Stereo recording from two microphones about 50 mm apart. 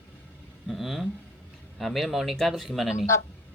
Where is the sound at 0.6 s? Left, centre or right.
Centre.